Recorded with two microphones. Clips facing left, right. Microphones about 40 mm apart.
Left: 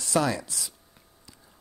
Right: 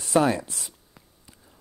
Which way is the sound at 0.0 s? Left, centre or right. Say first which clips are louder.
Right 4 dB; right.